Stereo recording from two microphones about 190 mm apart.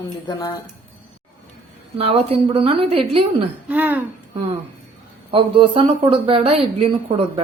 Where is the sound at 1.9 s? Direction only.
30° right (ahead or behind).